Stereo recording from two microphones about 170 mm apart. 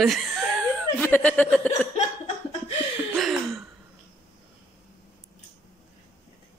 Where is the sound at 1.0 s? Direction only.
10° left (ahead or behind).